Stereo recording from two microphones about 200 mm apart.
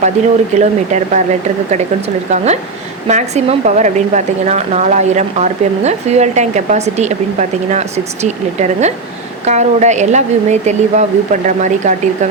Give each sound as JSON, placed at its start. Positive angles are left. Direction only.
{"t": 0.5, "sound": "speech", "side_deg": -35}